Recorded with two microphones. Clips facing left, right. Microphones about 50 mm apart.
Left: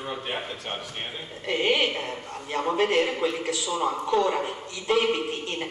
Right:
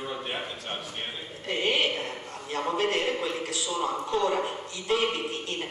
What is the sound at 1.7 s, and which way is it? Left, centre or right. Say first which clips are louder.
A woman's voice: left 1 dB; left.